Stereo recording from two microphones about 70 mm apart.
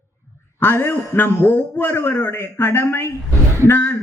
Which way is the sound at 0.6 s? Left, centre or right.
Left.